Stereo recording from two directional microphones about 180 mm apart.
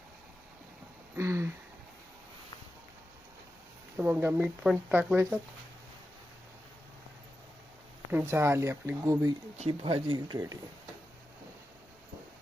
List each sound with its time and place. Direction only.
1.1 s a sound: 15° right (ahead or behind)
3.9 s speech: 10° right (ahead or behind)
8.1 s speech: 15° right (ahead or behind)
9.6 s speech: 30° right (ahead or behind)